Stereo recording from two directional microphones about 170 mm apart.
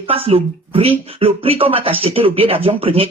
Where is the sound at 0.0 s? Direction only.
35° right (ahead or behind).